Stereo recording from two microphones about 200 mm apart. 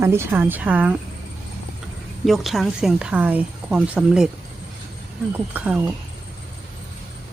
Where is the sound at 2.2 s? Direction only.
Centre (ahead or behind).